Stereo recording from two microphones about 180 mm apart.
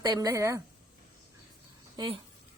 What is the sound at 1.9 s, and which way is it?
Speech, 30° right (ahead or behind).